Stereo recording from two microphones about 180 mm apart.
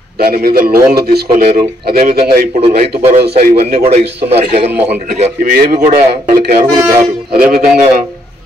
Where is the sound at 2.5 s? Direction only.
35° right (ahead or behind).